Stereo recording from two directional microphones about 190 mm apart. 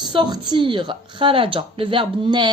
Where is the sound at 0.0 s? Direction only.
25° right (ahead or behind).